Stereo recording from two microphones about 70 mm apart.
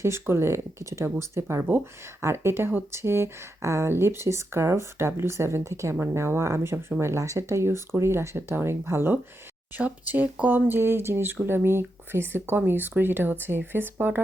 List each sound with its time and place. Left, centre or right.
0.0 s speech: right